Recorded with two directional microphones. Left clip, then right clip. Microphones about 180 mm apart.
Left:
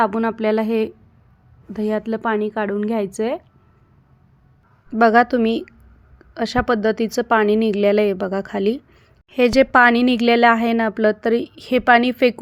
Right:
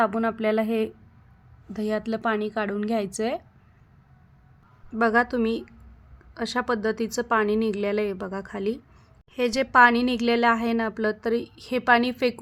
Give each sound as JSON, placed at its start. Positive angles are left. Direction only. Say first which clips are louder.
{"t": 0.0, "sound": "a woman's voice", "louder": "left 5 dB", "side_deg": 10}
{"t": 4.9, "sound": "a woman's voice", "louder": "left 8 dB", "side_deg": 20}